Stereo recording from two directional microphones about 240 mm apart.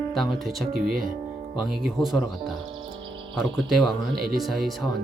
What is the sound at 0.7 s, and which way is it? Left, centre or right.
Speech, right.